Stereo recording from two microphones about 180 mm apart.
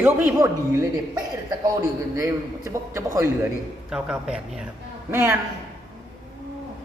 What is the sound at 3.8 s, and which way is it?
Speech, 5° right (ahead or behind).